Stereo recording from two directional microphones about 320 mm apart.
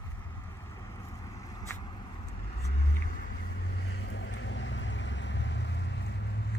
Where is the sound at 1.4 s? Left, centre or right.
Centre.